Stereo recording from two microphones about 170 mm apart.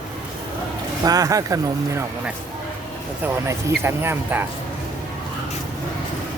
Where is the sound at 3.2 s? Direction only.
15° right (ahead or behind).